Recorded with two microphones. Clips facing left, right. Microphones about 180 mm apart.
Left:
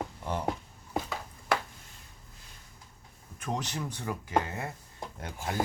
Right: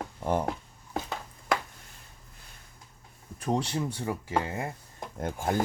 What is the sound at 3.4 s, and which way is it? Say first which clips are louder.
Speech: right 6 dB; 30° right (ahead or behind).